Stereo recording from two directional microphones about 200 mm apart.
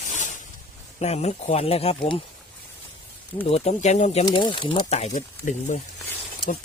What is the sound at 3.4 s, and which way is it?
Speech, 30° left (ahead or behind).